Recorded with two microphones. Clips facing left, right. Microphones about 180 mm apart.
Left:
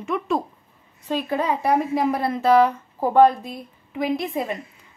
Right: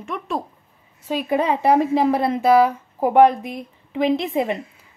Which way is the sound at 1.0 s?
10° right (ahead or behind).